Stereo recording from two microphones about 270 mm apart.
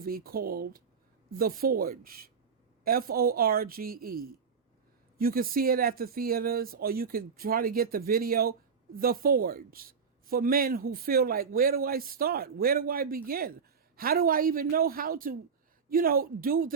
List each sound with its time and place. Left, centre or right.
0.0 s speech: right